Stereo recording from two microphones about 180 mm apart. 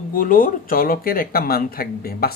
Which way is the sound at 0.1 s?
50° left (ahead or behind).